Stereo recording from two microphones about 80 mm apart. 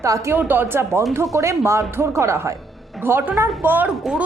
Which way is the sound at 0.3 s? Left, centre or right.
Right.